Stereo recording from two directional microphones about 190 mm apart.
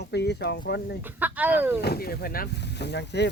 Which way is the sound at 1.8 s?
55° left (ahead or behind).